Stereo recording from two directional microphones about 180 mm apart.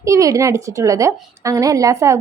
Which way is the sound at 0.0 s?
15° right (ahead or behind).